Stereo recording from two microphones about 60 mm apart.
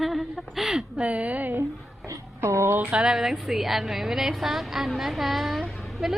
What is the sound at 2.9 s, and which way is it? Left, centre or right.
A woman's voice, centre.